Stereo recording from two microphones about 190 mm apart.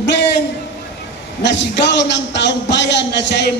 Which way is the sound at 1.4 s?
70° left (ahead or behind).